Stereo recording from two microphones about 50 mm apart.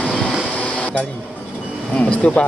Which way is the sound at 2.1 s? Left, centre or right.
Left.